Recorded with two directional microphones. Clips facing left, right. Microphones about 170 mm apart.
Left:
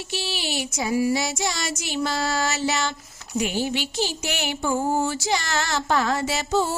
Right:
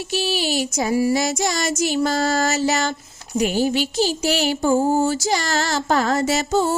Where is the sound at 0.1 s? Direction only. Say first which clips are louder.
Right 8 dB; 45° right (ahead or behind).